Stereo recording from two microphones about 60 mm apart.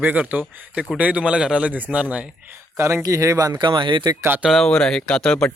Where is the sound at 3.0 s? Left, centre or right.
Right.